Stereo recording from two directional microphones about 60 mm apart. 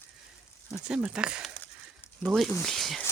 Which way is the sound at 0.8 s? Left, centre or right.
Centre.